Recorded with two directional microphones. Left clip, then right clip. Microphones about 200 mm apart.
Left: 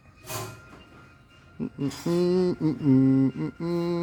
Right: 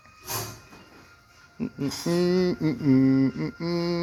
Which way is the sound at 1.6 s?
20° left (ahead or behind).